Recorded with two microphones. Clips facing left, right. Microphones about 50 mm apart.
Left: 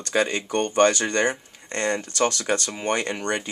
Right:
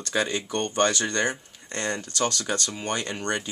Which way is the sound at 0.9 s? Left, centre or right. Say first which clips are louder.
Left 3 dB; left.